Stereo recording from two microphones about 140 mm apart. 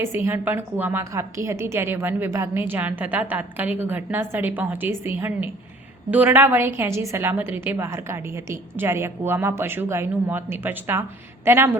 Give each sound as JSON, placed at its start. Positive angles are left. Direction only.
{"t": 0.0, "sound": "a woman's voice", "side_deg": -15}